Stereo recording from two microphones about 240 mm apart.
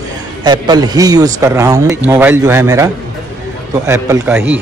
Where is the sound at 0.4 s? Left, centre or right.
Centre.